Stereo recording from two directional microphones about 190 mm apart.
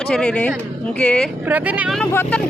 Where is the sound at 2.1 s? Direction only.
10° left (ahead or behind).